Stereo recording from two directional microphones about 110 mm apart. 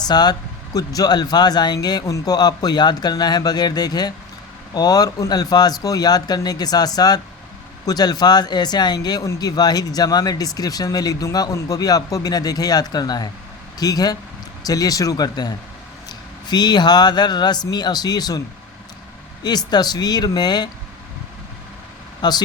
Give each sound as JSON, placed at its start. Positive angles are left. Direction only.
{"t": 0.0, "sound": "speech", "side_deg": 40}
{"t": 22.2, "sound": "speech", "side_deg": 40}